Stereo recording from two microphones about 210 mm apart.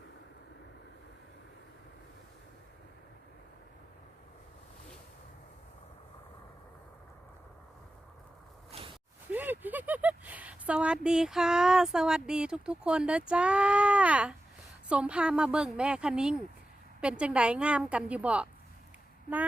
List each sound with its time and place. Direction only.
8.7 s zipper: 30° right (ahead or behind)
9.3 s speech: 10° right (ahead or behind)